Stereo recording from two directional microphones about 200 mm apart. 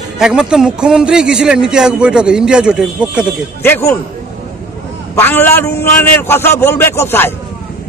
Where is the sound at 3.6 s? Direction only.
10° left (ahead or behind).